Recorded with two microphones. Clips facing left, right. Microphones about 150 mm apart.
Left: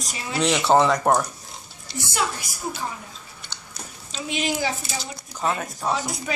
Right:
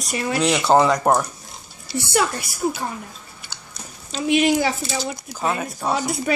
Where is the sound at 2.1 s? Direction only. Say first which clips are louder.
Right 6 dB; 60° right (ahead or behind).